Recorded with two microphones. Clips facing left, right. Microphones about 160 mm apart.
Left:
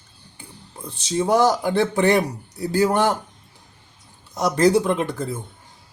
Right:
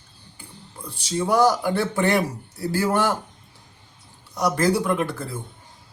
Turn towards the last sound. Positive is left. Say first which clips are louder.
# left 2 dB
turn(degrees=20)  # may be behind; listen again after turning